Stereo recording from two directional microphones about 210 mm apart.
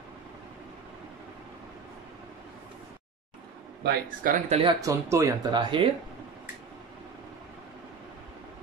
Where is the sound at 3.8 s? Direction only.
45° right (ahead or behind).